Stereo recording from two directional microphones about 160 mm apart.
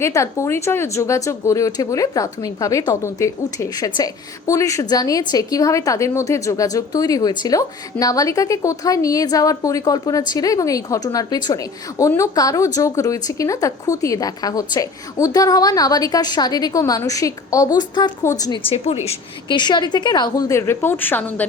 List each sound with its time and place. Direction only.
0.0 s a woman's voice: 20° left (ahead or behind)
18.6 s a woman's voice: 35° left (ahead or behind); by 21.4 s 10° left (ahead or behind)